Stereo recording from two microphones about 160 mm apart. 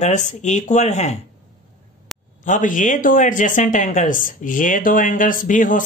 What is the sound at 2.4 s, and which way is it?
Speech, 55° left (ahead or behind).